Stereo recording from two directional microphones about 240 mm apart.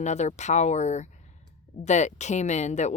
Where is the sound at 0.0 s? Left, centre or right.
Left.